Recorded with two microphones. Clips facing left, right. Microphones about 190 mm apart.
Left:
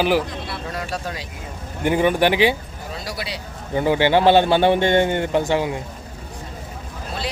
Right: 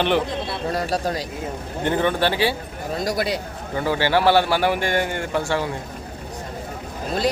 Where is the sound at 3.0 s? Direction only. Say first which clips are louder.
Right 9 dB; 45° right (ahead or behind).